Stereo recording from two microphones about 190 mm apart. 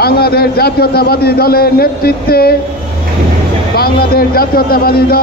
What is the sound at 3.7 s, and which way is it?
Speech, 55° left (ahead or behind).